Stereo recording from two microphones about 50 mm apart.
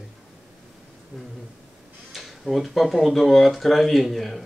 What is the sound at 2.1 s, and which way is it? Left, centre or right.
Speech, centre.